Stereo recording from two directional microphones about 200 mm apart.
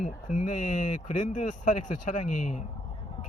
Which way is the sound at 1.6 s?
40° left (ahead or behind).